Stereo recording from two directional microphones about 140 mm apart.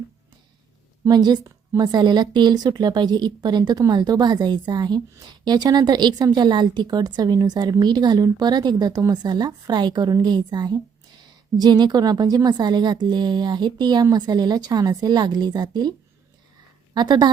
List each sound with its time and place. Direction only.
1.0 s a woman's voice: 30° right (ahead or behind)
16.9 s a woman's voice: 30° right (ahead or behind)